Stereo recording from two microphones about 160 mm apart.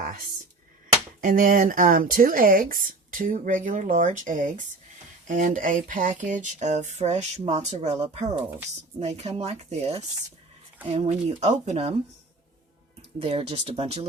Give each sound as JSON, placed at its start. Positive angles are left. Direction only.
{"t": 1.2, "sound": "speech", "side_deg": -60}
{"t": 5.3, "sound": "a sound", "side_deg": -55}
{"t": 8.4, "sound": "speech", "side_deg": -10}
{"t": 9.0, "sound": "speech", "side_deg": -45}
{"t": 10.8, "sound": "a sound", "side_deg": -40}
{"t": 13.0, "sound": "speech", "side_deg": -35}